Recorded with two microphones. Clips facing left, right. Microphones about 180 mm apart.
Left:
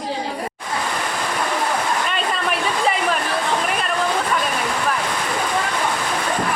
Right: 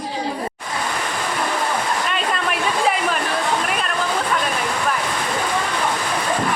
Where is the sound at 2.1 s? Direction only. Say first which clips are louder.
Even; centre (ahead or behind).